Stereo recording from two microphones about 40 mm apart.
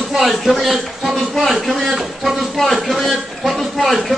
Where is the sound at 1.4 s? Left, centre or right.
Centre.